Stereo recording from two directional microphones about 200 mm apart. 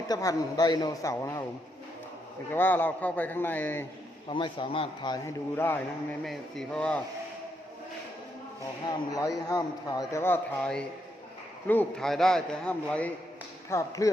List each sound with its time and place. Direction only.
0.1 s a man's voice: 20° left (ahead or behind)
2.5 s a man's voice: 10° left (ahead or behind)
4.3 s speech: 25° left (ahead or behind)
5.5 s a man's voice: 10° left (ahead or behind)
8.9 s a man's voice: 15° left (ahead or behind)